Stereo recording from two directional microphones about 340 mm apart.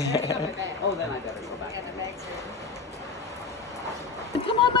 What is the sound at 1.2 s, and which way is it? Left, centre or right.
Speech, centre.